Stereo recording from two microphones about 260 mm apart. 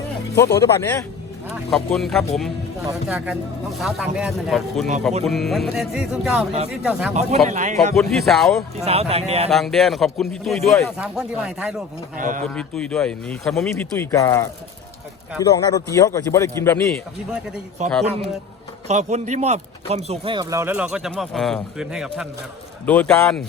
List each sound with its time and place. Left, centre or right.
0.3 s a man's voice: centre
1.7 s speech: centre
7.1 s a man's voice: right
7.9 s speech: centre
8.7 s a man's voice: right
9.5 s speech: centre
12.1 s speech: right
12.5 s a man's voice: centre
17.8 s a man's voice: right; by 23.4 s centre